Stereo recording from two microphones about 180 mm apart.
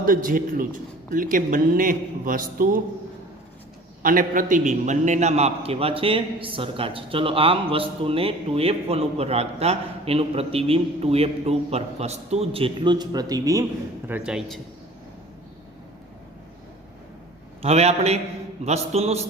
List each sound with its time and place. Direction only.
0.0 s speech: 50° right (ahead or behind)
4.0 s a man's voice: 50° right (ahead or behind); by 13.7 s 20° right (ahead or behind)
14.1 s speech: 5° right (ahead or behind)
17.6 s a man's voice: 35° right (ahead or behind)